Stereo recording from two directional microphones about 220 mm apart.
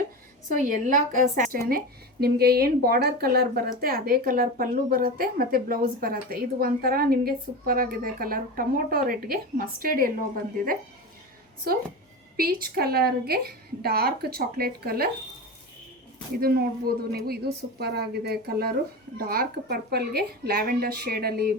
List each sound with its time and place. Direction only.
0.5 s speech: 35° right (ahead or behind)
12.4 s a woman's voice: 45° right (ahead or behind)
16.3 s a woman's voice: 45° right (ahead or behind)